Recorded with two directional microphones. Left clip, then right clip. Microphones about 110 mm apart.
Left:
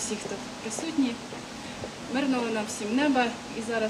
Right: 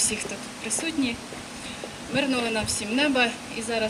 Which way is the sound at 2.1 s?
40° right (ahead or behind).